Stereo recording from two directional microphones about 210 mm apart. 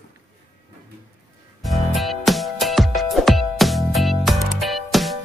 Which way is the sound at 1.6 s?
Centre (ahead or behind).